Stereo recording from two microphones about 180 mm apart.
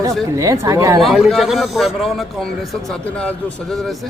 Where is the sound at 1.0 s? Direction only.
Centre (ahead or behind).